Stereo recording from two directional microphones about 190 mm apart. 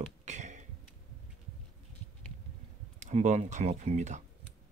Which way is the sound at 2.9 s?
40° right (ahead or behind).